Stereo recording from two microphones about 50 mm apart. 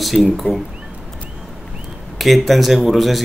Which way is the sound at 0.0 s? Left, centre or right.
Centre.